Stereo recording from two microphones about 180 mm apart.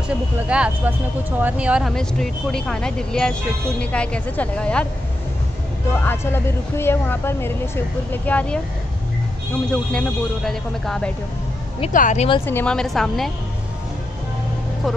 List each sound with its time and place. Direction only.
0.1 s speech: 5° right (ahead or behind)
5.9 s a woman's voice: 10° left (ahead or behind)
9.7 s speech: 5° left (ahead or behind)
11.9 s speech: 45° left (ahead or behind)
12.4 s speech: 10° left (ahead or behind)